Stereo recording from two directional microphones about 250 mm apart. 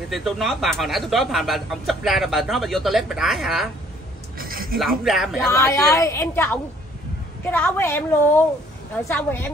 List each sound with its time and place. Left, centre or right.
0.1 s speech: centre
4.4 s a sound: right
4.7 s speech: centre
5.5 s a woman's voice: centre